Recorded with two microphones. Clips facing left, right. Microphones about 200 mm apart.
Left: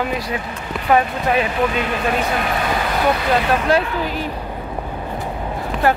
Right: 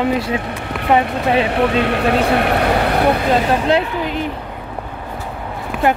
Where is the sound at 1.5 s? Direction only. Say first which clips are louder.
Right 4 dB; 70° right (ahead or behind).